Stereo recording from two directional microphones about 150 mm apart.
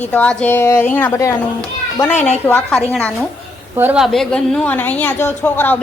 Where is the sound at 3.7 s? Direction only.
15° right (ahead or behind).